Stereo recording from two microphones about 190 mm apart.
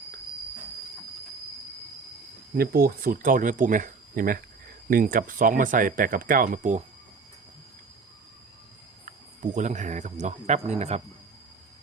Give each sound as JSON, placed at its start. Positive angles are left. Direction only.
{"t": 2.6, "sound": "speech", "side_deg": -50}
{"t": 9.0, "sound": "speech", "side_deg": -40}